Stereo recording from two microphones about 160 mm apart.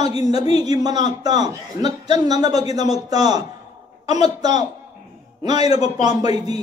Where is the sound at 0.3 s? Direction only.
25° right (ahead or behind).